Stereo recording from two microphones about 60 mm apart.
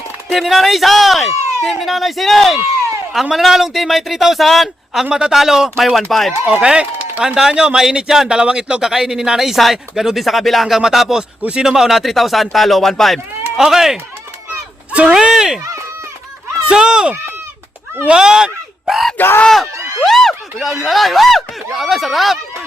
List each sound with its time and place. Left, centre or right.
0.3 s speech: centre
5.7 s speech: centre
6.5 s speech: centre
13.6 s speech: centre
15.1 s speech: centre
16.6 s speech: centre
19.1 s speech: left
19.5 s speech: centre